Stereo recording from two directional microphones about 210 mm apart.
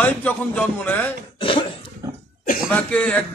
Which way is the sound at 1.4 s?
25° left (ahead or behind).